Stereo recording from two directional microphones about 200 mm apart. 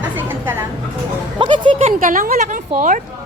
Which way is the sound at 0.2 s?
10° right (ahead or behind).